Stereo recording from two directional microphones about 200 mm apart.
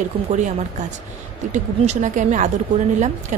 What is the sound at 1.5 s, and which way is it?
A woman's voice, 35° right (ahead or behind).